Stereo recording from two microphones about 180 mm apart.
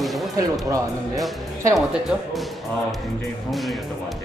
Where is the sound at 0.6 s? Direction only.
20° right (ahead or behind).